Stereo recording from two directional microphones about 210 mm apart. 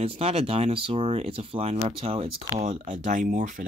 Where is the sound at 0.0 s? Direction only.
30° right (ahead or behind).